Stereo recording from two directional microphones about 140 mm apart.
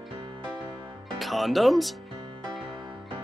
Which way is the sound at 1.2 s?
Centre (ahead or behind).